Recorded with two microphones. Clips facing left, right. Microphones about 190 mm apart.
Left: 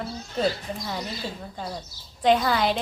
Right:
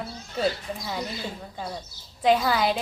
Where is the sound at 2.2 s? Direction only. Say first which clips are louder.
Left 1 dB; 5° right (ahead or behind).